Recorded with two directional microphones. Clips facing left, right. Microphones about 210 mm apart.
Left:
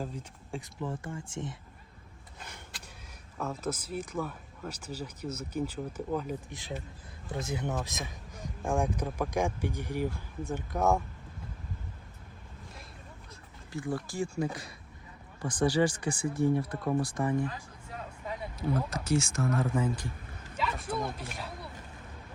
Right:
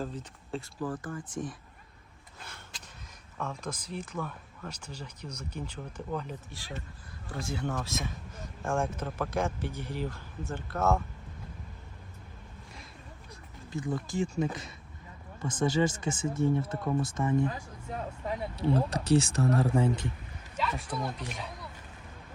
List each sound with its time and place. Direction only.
0.0 s speech: 10° left (ahead or behind)
3.3 s speech: 5° left (ahead or behind)
6.5 s speech: 20° left (ahead or behind)
13.7 s speech: 20° right (ahead or behind)
18.5 s speech: 35° right (ahead or behind)
20.6 s speech: 5° left (ahead or behind)